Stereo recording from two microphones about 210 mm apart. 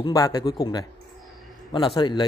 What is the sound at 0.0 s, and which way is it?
Speech, 20° left (ahead or behind).